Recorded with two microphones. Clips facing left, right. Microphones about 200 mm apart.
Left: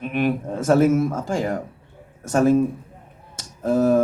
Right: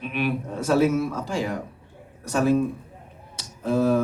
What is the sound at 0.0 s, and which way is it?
A man's voice, 50° left (ahead or behind).